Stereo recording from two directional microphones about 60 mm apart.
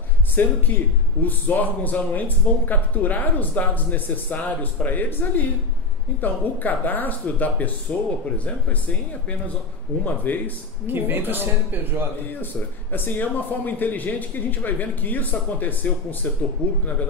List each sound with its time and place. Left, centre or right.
0.4 s a man's voice: left
10.0 s speech: left
10.9 s speech: right
12.9 s a man's voice: left